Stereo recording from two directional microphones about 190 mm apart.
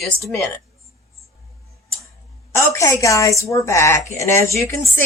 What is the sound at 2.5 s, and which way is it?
A woman's voice, 15° left (ahead or behind).